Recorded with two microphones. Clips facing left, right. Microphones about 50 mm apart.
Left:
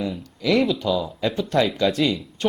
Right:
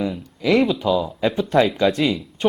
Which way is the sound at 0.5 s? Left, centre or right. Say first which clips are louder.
Right 2 dB; centre.